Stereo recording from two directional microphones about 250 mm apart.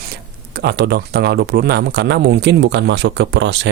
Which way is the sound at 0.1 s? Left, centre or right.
Right.